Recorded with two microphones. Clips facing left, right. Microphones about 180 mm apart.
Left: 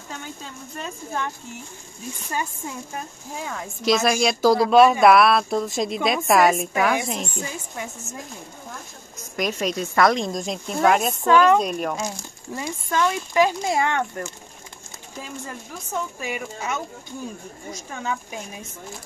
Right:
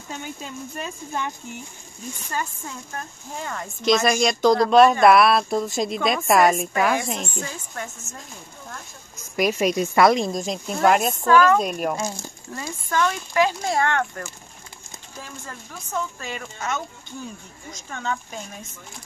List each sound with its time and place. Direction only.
0.1 s speech: 15° right (ahead or behind)
2.3 s speech: 15° left (ahead or behind)
7.4 s speech: 15° left (ahead or behind)
9.4 s speech: 10° right (ahead or behind)
11.2 s speech: 20° left (ahead or behind)
11.6 s speech: 5° right (ahead or behind)
12.5 s speech: 20° left (ahead or behind)